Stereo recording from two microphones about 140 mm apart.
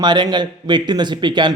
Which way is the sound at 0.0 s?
30° right (ahead or behind).